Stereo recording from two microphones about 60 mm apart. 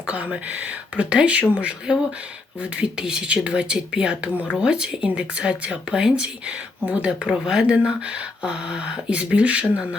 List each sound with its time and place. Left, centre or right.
0.1 s speech: right